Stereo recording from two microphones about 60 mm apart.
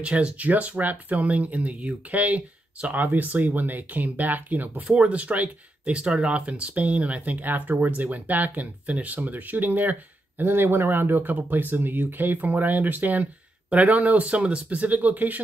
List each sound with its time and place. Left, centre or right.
0.0 s speech: centre
4.8 s speech: centre